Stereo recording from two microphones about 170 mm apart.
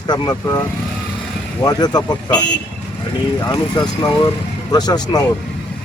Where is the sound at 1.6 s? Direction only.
20° left (ahead or behind).